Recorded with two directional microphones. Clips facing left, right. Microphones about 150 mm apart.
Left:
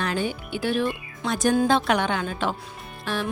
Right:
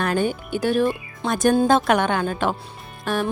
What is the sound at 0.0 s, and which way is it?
Speech, 50° right (ahead or behind).